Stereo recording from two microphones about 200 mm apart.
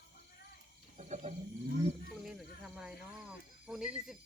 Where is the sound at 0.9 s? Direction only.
35° right (ahead or behind).